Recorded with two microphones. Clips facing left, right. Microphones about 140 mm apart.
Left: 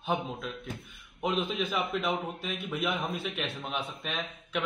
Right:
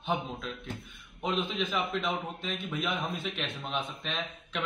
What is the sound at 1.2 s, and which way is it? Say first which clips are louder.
A man's voice: left 1 dB; 5° left (ahead or behind).